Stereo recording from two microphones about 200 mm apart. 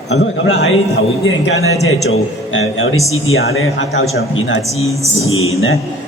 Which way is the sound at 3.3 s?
90° left.